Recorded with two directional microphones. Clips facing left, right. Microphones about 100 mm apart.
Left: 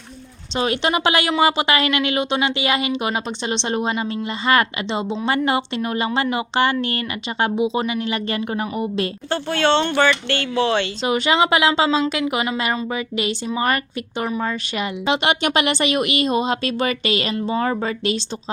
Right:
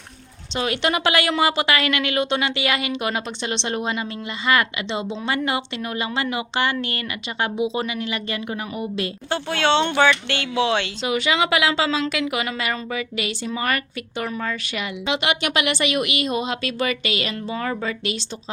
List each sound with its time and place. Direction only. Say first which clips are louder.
0.5 s a woman's voice: left 2 dB; 25° left (ahead or behind)
9.3 s speech: left 2 dB; 5° right (ahead or behind)
11.0 s a woman's voice: left 5 dB; 35° left (ahead or behind)